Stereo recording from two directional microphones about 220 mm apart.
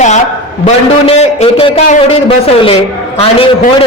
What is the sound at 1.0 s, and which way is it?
Speech, 30° left (ahead or behind).